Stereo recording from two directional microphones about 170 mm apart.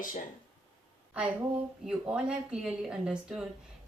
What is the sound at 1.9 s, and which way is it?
Speech, 5° right (ahead or behind).